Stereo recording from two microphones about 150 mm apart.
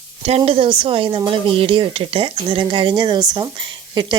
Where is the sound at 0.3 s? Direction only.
40° right (ahead or behind).